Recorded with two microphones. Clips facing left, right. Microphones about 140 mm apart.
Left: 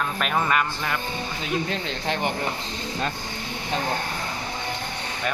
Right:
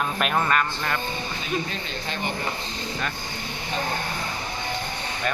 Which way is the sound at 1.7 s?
90° left.